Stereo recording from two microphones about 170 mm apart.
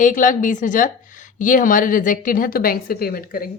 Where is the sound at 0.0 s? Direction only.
50° left (ahead or behind).